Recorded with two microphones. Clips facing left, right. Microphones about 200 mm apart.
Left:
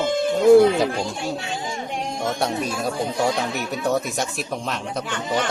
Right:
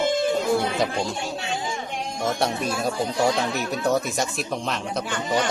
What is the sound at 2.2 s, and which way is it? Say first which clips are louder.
A man's voice: even; centre (ahead or behind).